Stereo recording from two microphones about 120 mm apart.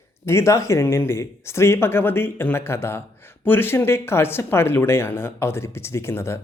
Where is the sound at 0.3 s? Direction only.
25° left (ahead or behind).